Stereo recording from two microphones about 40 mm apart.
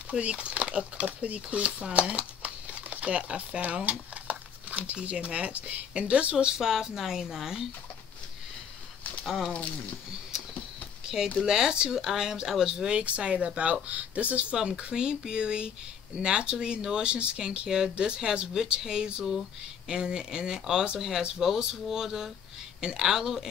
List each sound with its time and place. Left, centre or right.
0.1 s speech: right
6.3 s speech: centre
9.2 s speech: centre
11.3 s speech: centre
13.0 s speech: right
14.5 s speech: right
17.6 s speech: centre